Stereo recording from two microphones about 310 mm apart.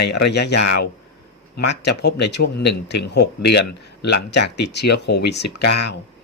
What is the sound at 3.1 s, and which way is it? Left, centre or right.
Speech, left.